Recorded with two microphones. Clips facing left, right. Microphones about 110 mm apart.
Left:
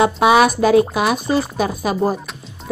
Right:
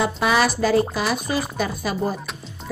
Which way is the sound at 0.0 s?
70° left (ahead or behind).